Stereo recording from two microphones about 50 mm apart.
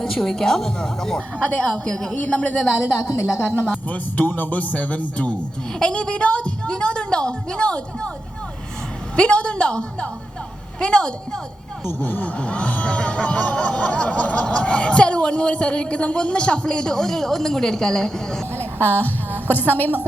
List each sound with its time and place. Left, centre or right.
0.0 s a woman's voice: centre
1.4 s a woman's voice: left
2.8 s a woman's voice: left
3.7 s a man's voice: left
5.8 s a woman's voice: centre
9.1 s a woman's voice: left
11.9 s a man's voice: left
12.4 s speech: left
18.5 s a woman's voice: left